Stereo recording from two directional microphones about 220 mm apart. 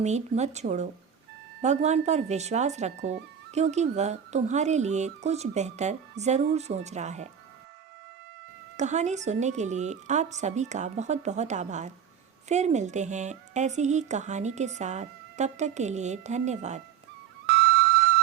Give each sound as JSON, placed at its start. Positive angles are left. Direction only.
{"t": 0.0, "sound": "speech", "side_deg": -30}
{"t": 8.8, "sound": "speech", "side_deg": -30}
{"t": 17.4, "sound": "music", "side_deg": -50}